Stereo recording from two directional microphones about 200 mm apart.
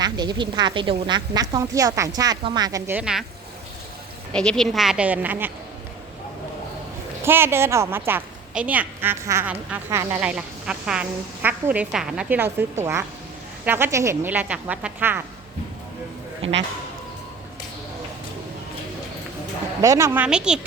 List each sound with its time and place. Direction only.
0.0 s a woman's voice: 20° right (ahead or behind); by 3.2 s 5° right (ahead or behind)
4.3 s speech: 5° left (ahead or behind)
7.3 s a woman's voice: 10° right (ahead or behind)
16.4 s speech: 65° right (ahead or behind)
19.8 s a woman's voice: 15° right (ahead or behind)